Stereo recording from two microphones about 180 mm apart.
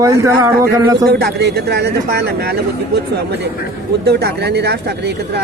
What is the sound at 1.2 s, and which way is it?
Speech, 65° right (ahead or behind).